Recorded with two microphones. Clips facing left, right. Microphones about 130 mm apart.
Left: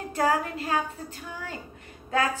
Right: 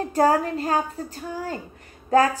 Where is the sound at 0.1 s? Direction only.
35° right (ahead or behind).